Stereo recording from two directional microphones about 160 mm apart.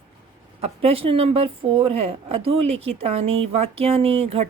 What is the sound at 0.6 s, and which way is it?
Speech, 35° right (ahead or behind).